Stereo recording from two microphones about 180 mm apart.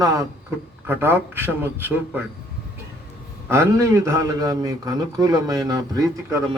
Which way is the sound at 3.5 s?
15° right (ahead or behind).